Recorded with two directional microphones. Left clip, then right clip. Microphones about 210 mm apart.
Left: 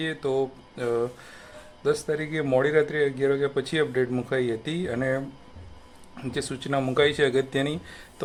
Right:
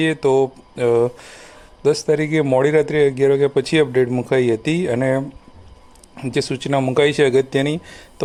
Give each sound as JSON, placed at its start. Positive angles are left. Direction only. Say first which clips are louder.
{"t": 0.0, "sound": "speech", "louder": "right 10 dB", "side_deg": -35}